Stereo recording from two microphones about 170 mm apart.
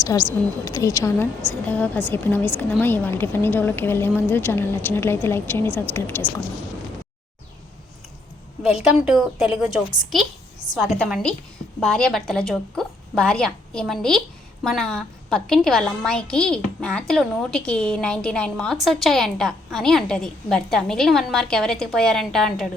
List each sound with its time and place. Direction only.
0.0 s a woman's voice: 20° left (ahead or behind)
8.6 s a woman's voice: centre (ahead or behind)
10.8 s a woman's voice: centre (ahead or behind)